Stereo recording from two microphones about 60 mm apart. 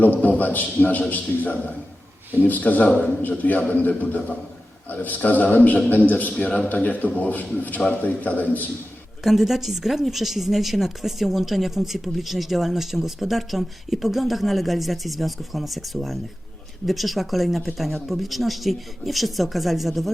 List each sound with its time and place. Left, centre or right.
0.2 s a man's voice: left
9.2 s speech: centre